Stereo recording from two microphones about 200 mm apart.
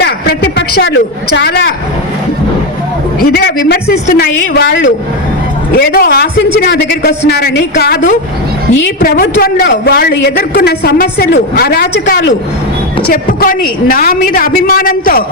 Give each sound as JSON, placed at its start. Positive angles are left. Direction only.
{"t": 0.0, "sound": "a sound", "side_deg": 55}
{"t": 1.4, "sound": "a woman's voice", "side_deg": 55}
{"t": 3.3, "sound": "a woman's voice", "side_deg": 55}
{"t": 8.7, "sound": "a woman's voice", "side_deg": 70}
{"t": 9.0, "sound": "a woman's voice", "side_deg": 50}
{"t": 13.1, "sound": "a woman's voice", "side_deg": 45}